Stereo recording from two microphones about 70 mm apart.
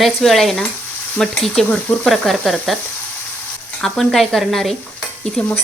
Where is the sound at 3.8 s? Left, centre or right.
Centre.